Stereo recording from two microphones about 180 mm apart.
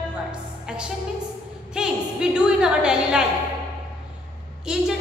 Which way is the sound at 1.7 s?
5° right (ahead or behind).